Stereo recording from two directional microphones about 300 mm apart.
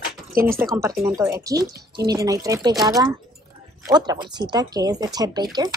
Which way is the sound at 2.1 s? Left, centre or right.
Centre.